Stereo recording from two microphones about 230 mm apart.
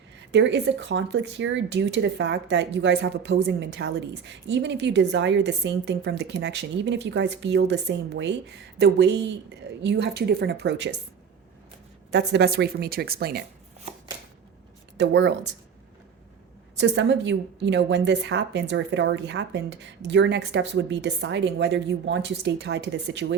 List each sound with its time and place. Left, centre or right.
0.3 s speech: right
12.1 s speech: right
14.9 s speech: right
16.7 s speech: right